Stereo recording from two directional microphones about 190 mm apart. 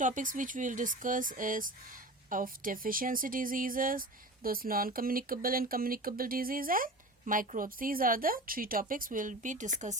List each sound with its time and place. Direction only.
0.0 s speech: 45° right (ahead or behind)